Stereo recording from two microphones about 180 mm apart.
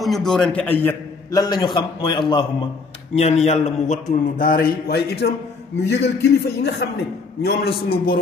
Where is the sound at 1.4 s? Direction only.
25° left (ahead or behind).